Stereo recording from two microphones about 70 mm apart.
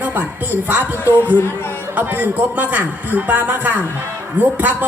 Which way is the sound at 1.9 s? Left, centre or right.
Right.